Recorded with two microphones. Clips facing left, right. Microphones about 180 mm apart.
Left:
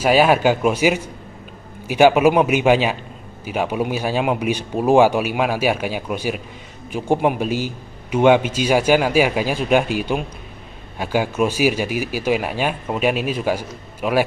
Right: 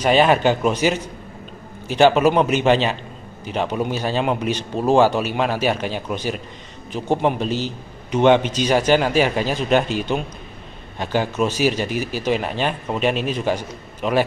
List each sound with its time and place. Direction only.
0.0 s a man's voice: 5° left (ahead or behind)